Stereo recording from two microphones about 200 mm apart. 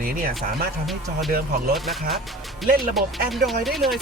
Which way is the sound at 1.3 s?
45° right (ahead or behind).